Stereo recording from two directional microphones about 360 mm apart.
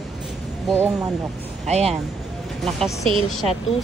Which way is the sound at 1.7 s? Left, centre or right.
Centre.